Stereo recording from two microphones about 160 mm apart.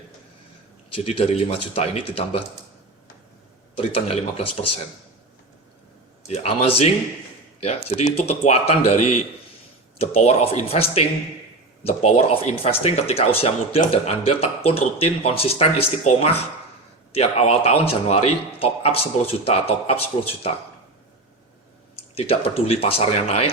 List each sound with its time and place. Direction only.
0.9 s speech: 35° left (ahead or behind)
3.8 s speech: 35° left (ahead or behind)
6.2 s speech: 40° left (ahead or behind)
21.9 s speech: 35° left (ahead or behind)